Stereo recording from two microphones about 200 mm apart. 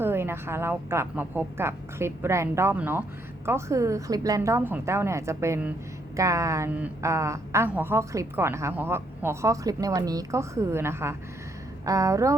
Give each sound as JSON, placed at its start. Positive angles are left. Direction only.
{"t": 0.0, "sound": "a woman's voice", "side_deg": -10}